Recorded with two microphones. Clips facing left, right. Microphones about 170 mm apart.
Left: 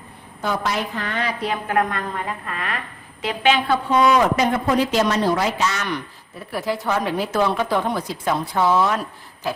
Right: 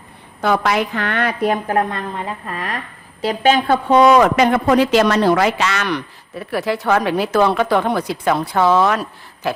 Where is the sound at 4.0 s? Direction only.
80° right.